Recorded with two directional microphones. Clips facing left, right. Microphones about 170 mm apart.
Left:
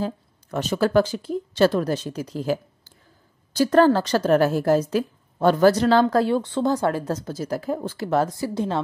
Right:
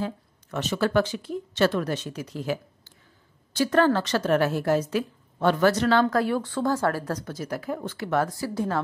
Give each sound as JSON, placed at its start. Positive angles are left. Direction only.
{"t": 0.0, "sound": "a woman's voice", "side_deg": 35}